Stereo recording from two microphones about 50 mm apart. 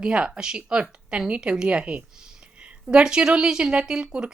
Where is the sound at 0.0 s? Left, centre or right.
Centre.